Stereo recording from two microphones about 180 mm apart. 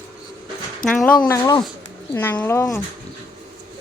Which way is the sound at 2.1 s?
10° left (ahead or behind).